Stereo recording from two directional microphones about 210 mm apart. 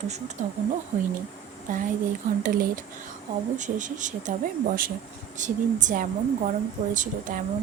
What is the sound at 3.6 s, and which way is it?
Speech, 35° right (ahead or behind).